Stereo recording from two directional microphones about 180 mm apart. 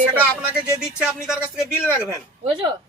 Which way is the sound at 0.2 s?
5° right (ahead or behind).